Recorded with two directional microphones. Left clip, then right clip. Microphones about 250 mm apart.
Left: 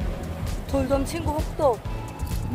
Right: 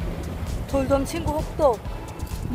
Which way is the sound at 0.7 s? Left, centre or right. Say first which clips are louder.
Right 2 dB; centre.